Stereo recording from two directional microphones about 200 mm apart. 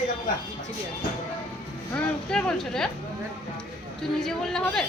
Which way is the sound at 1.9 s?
5° left (ahead or behind).